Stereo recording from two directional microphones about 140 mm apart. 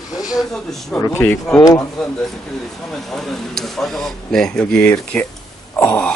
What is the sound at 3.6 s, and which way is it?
Speech, centre (ahead or behind).